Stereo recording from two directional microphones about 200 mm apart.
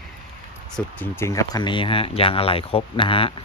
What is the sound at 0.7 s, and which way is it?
Speech, 10° left (ahead or behind).